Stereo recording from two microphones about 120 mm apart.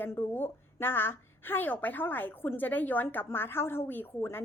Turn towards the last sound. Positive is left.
turn(degrees=15)  # may be behind; listen again after turning